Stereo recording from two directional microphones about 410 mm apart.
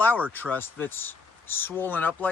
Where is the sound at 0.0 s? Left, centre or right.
Centre.